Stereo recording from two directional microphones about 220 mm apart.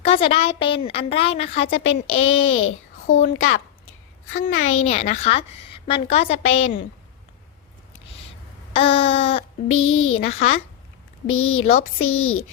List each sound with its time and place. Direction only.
0.0 s a woman's voice: 25° left (ahead or behind)
1.6 s a child's voice: 60° left (ahead or behind)
4.8 s a woman's voice: 30° left (ahead or behind)
6.5 s a child's voice: 65° left (ahead or behind)
8.7 s a sound: 25° left (ahead or behind)
9.6 s a child's voice: 65° left (ahead or behind)